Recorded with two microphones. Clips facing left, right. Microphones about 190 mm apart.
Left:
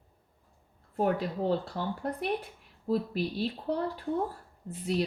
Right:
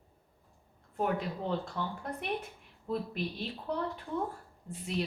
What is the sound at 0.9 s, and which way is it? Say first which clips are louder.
Speech: left 4 dB; 35° left (ahead or behind).